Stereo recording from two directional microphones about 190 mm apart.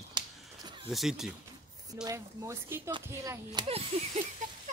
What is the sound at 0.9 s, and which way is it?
Speech, centre (ahead or behind).